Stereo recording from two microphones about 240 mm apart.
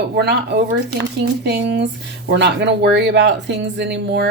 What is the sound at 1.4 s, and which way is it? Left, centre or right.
Speech, right.